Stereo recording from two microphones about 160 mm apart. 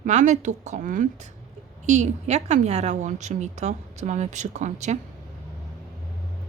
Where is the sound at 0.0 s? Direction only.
50° right (ahead or behind).